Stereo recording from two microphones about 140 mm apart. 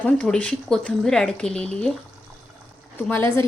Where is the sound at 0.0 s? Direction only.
10° left (ahead or behind).